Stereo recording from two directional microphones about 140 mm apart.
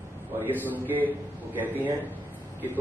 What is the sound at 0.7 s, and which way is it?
A man's voice, 15° right (ahead or behind).